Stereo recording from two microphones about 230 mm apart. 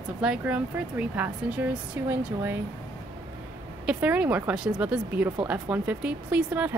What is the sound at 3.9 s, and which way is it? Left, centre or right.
Speech, centre.